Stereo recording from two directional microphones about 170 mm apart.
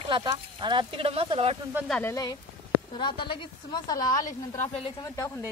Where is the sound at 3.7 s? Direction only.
25° left (ahead or behind).